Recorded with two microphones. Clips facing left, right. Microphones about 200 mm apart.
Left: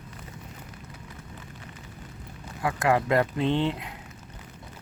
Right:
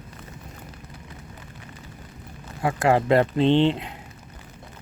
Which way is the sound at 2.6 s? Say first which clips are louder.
Right 4 dB; 30° right (ahead or behind).